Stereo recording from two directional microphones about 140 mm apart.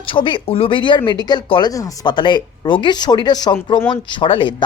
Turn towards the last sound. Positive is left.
turn(degrees=35)  # may be behind; listen again after turning